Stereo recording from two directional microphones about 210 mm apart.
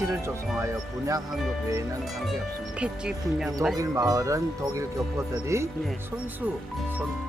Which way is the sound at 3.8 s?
15° right (ahead or behind).